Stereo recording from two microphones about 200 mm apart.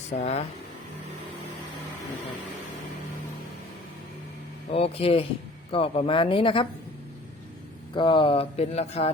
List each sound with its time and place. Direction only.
0.2 s speech: 35° left (ahead or behind)
4.7 s speech: 30° left (ahead or behind)
7.9 s speech: 25° left (ahead or behind)